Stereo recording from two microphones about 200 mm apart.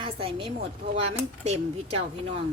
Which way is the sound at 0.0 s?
25° right (ahead or behind).